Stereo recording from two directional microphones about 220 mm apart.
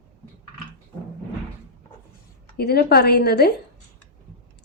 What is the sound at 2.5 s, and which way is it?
Speech, 45° left (ahead or behind).